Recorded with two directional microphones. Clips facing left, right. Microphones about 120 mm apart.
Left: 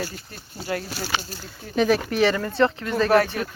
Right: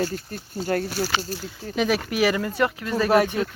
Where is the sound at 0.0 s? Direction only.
50° right (ahead or behind).